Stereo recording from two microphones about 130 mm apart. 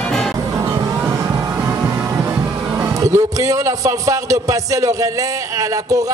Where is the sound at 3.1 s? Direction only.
25° right (ahead or behind).